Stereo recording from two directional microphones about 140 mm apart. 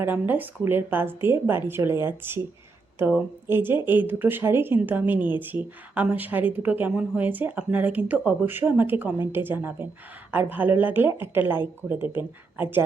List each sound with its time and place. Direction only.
0.0 s speech: 15° right (ahead or behind)